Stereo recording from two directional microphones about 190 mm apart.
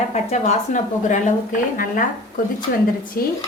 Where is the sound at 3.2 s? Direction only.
50° left (ahead or behind).